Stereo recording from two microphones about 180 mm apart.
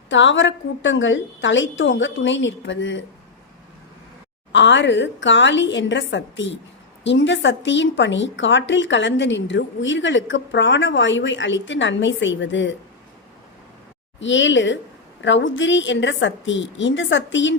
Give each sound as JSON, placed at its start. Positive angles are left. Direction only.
{"t": 0.1, "sound": "a woman's voice", "side_deg": 90}
{"t": 4.5, "sound": "a woman's voice", "side_deg": 90}
{"t": 14.2, "sound": "a woman's voice", "side_deg": 90}